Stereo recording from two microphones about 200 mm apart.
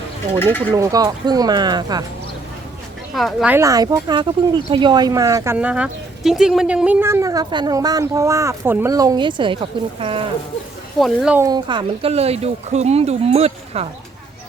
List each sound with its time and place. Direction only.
0.3 s speech: 10° left (ahead or behind)
0.7 s speech: 20° right (ahead or behind)
3.2 s speech: centre (ahead or behind)
3.5 s speech: 15° right (ahead or behind)
5.5 s speech: 5° right (ahead or behind); by 10.2 s 25° right (ahead or behind)
11.0 s speech: centre (ahead or behind)
11.3 s speech: 20° right (ahead or behind)